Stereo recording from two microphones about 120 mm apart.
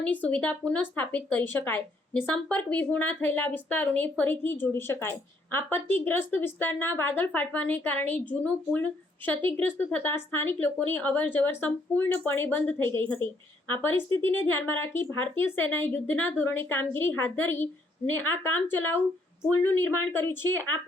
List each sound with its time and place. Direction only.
0.0 s speech: 15° left (ahead or behind)
19.5 s speech: 15° left (ahead or behind)